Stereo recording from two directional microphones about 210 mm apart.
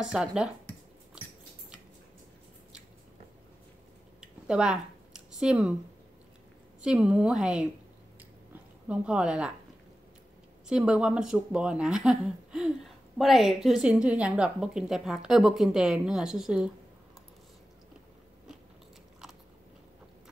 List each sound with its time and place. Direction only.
0.0 s a woman's voice: 5° right (ahead or behind)
4.2 s a sound: 5° right (ahead or behind)
6.8 s a woman's voice: 5° right (ahead or behind)
8.8 s a woman's voice: 5° right (ahead or behind)
10.7 s a woman's voice: 5° right (ahead or behind)